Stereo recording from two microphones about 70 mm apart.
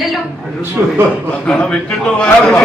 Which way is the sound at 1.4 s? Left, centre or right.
Centre.